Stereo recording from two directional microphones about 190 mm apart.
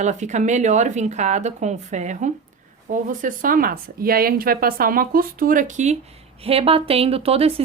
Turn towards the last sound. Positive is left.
turn(degrees=-30)  # may be behind; listen again after turning